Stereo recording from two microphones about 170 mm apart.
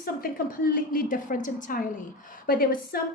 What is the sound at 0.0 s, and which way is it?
A woman's voice, 60° left (ahead or behind).